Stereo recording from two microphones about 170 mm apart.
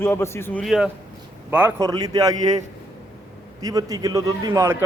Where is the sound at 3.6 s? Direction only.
20° right (ahead or behind).